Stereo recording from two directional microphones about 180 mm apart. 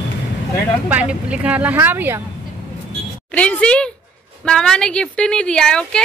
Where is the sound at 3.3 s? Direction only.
5° left (ahead or behind).